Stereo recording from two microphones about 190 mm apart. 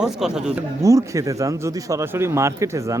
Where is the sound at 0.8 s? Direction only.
15° right (ahead or behind).